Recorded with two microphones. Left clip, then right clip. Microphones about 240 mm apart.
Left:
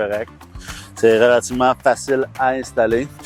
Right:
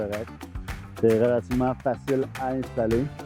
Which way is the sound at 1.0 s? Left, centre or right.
Centre.